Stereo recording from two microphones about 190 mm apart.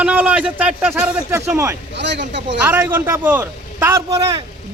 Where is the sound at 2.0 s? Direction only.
65° right (ahead or behind).